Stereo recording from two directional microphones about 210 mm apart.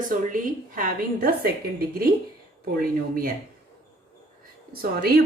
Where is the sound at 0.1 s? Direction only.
40° right (ahead or behind).